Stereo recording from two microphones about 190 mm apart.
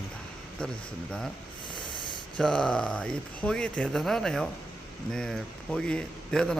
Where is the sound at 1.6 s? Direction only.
25° left (ahead or behind).